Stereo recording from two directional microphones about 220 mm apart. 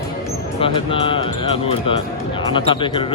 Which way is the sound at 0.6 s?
25° left (ahead or behind).